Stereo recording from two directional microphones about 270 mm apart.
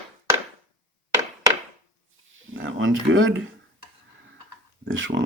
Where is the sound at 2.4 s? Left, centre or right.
Right.